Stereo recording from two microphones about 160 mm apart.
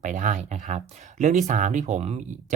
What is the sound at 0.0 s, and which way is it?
Speech, 50° right (ahead or behind).